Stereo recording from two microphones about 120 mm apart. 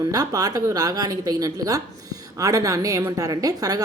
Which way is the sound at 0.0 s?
30° right (ahead or behind).